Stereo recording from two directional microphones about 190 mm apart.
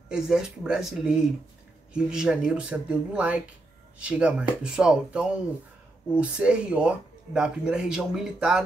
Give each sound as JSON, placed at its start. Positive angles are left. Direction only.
{"t": 0.1, "sound": "speech", "side_deg": -5}